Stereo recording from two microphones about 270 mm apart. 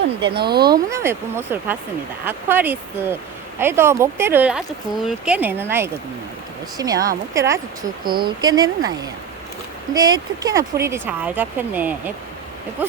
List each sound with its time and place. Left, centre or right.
0.3 s speech: right
0.7 s speech: centre